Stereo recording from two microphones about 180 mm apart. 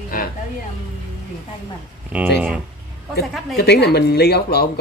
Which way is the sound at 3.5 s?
65° left (ahead or behind).